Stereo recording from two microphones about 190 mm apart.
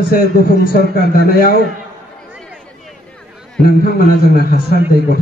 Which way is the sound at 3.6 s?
55° left (ahead or behind).